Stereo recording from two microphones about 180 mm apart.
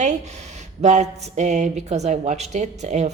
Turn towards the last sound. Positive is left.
turn(degrees=-40)  # may be behind; listen again after turning